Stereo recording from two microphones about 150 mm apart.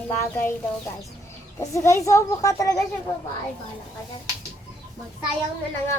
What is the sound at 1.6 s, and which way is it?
Speech, 20° left (ahead or behind).